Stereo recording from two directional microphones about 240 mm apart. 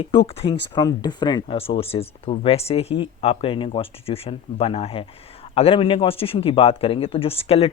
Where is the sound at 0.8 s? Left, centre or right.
Centre.